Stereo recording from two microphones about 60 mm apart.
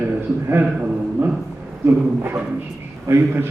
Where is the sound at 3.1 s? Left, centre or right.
Right.